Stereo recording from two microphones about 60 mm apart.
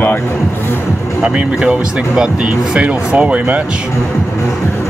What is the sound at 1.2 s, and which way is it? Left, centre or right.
Speech, centre.